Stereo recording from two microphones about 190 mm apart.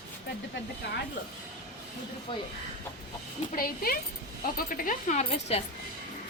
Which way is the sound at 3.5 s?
50° left (ahead or behind).